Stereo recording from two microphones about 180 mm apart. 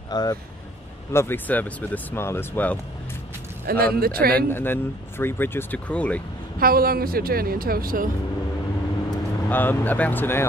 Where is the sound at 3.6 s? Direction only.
55° right (ahead or behind).